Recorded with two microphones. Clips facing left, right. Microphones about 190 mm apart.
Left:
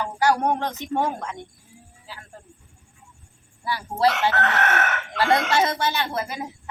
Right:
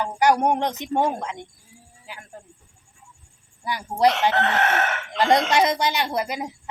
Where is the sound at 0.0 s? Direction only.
20° right (ahead or behind).